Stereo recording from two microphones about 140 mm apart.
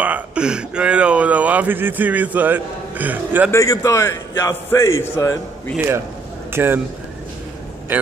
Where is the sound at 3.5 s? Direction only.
25° left (ahead or behind).